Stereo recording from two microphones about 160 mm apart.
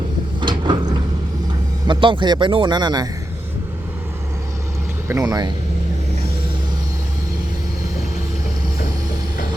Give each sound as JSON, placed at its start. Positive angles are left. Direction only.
{"t": 0.3, "sound": "sliding door", "side_deg": -30}
{"t": 1.9, "sound": "speech", "side_deg": -30}
{"t": 5.0, "sound": "speech", "side_deg": -20}